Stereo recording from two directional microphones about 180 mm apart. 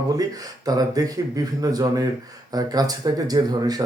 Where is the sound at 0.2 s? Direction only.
20° right (ahead or behind).